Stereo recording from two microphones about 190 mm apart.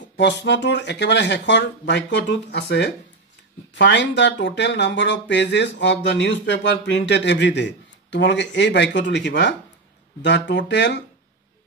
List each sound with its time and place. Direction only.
0.2 s speech: 65° left (ahead or behind)